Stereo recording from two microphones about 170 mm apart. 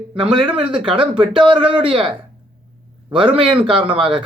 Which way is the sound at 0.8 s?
30° right (ahead or behind).